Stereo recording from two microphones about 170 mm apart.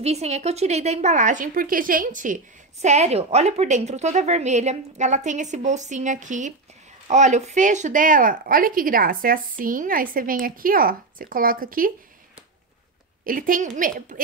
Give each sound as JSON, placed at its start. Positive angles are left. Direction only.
{"t": 0.0, "sound": "a woman's voice", "side_deg": -40}
{"t": 13.2, "sound": "a woman's voice", "side_deg": -55}